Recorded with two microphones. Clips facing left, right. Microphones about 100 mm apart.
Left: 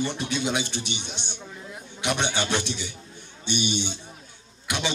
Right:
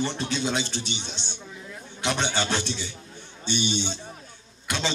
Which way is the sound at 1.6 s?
15° left (ahead or behind).